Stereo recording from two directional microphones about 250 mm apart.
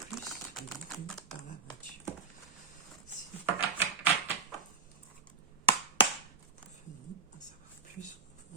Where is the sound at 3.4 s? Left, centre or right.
Centre.